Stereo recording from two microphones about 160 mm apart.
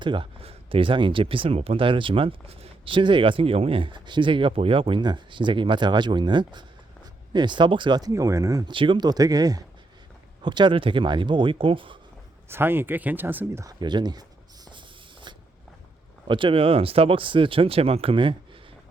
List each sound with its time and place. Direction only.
0.0 s speech: 30° right (ahead or behind)
8.7 s speech: 30° right (ahead or behind)
12.5 s a sound: 15° right (ahead or behind); by 15.4 s 30° right (ahead or behind)
16.2 s speech: 30° right (ahead or behind)